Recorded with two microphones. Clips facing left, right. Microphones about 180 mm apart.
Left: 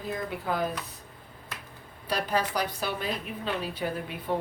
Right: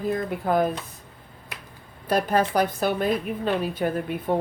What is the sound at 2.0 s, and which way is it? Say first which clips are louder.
Speech: right 6 dB; 50° right (ahead or behind).